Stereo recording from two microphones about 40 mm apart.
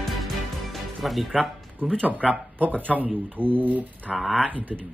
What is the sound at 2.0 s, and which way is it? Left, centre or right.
Speech, right.